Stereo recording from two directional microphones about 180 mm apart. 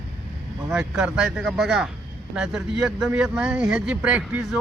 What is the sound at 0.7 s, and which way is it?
A man's voice, 5° right (ahead or behind).